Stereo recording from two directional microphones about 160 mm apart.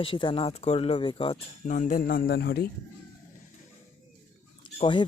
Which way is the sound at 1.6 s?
50° left (ahead or behind).